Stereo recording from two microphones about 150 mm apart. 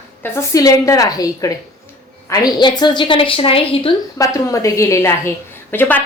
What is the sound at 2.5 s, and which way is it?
A woman's voice, 30° left (ahead or behind).